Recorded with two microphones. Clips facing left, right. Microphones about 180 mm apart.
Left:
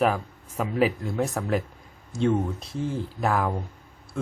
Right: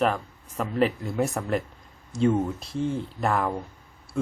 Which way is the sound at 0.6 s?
5° left (ahead or behind).